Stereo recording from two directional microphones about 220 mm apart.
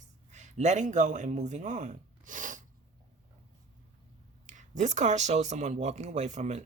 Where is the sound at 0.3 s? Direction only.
30° right (ahead or behind).